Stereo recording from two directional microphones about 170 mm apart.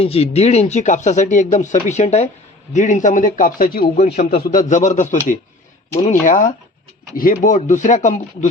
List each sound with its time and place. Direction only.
0.0 s speech: 35° left (ahead or behind); by 3.8 s 55° left (ahead or behind)
3.9 s a man's voice: 40° left (ahead or behind)
4.2 s speech: 65° left (ahead or behind); by 8.4 s 45° left (ahead or behind)